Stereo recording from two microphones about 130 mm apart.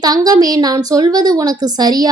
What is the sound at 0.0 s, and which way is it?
A woman's voice, 30° right (ahead or behind).